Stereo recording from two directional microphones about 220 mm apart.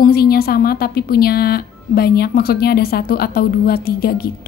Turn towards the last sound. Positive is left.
turn(degrees=45)  # may be behind; listen again after turning